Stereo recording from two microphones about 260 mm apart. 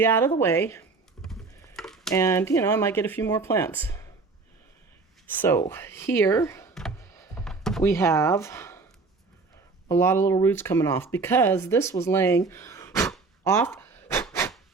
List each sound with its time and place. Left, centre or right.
0.0 s speech: centre
1.6 s a sound: centre
2.1 s speech: centre
5.3 s speech: centre
7.3 s thunk: centre
9.9 s speech: centre